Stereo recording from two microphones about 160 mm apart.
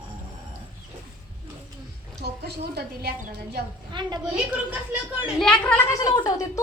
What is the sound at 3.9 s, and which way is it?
Speech, 30° right (ahead or behind).